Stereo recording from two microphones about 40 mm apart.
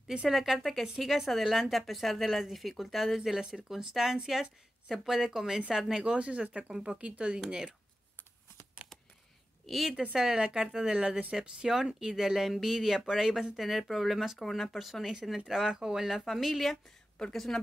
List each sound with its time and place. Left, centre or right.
0.3 s a woman's voice: centre
3.3 s speech: centre
6.0 s speech: right
6.7 s speech: centre
7.3 s speech: centre
9.7 s a woman's voice: centre
10.3 s a woman's voice: right; by 17.6 s centre